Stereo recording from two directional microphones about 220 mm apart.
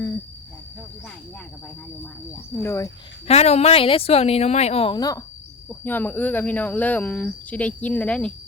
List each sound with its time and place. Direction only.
2.3 s speech: 10° left (ahead or behind)
3.2 s speech: 30° left (ahead or behind); by 8.3 s 5° left (ahead or behind)